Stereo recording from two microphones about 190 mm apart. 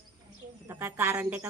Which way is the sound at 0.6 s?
15° right (ahead or behind).